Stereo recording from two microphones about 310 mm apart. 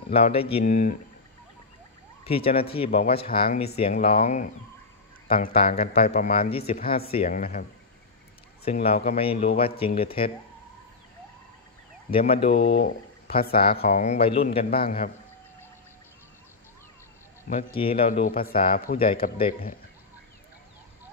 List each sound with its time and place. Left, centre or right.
0.1 s a man's voice: centre
2.2 s a man's voice: centre
8.8 s speech: centre
12.1 s speech: centre
13.7 s a man's voice: left
17.5 s a man's voice: left